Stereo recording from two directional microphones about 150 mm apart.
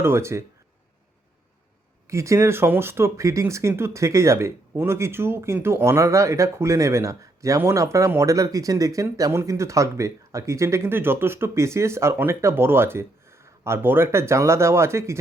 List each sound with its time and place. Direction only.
0.0 s speech: 15° right (ahead or behind)
2.0 s speech: 20° right (ahead or behind)